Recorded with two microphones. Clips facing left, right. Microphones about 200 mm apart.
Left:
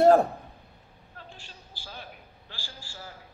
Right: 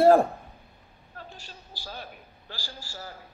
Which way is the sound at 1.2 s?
40° right (ahead or behind).